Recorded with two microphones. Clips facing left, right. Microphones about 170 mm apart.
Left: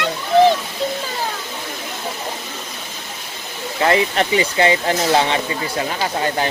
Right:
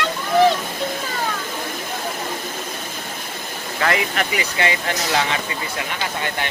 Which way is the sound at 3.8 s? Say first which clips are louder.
Left 5 dB; 25° left (ahead or behind).